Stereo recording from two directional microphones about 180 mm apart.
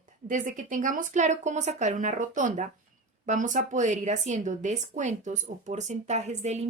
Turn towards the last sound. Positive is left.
turn(degrees=-40)  # may be behind; listen again after turning